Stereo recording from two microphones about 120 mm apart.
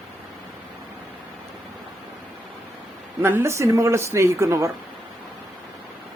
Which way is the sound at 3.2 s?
20° right (ahead or behind).